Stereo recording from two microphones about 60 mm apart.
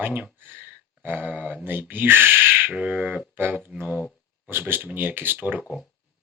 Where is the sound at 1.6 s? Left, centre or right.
Right.